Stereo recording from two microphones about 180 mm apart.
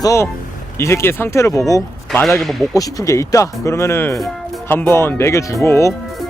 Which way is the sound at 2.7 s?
20° left (ahead or behind).